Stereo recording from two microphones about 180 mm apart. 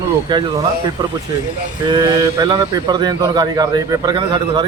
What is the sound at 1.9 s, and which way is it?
A man's voice, 20° right (ahead or behind).